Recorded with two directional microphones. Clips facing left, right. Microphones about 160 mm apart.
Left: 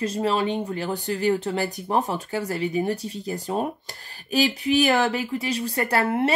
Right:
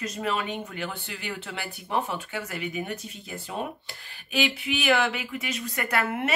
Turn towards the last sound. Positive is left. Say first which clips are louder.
# left 5 dB
turn(degrees=30)  # may be behind; listen again after turning